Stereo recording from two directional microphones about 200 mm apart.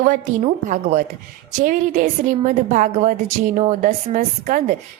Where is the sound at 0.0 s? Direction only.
40° right (ahead or behind).